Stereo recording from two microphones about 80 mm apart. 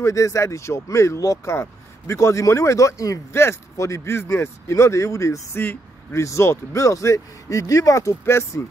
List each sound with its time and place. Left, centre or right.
0.0 s speech: left